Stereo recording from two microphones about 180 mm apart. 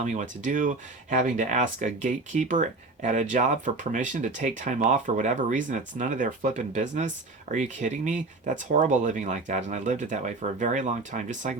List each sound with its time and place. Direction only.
0.0 s speech: 40° right (ahead or behind)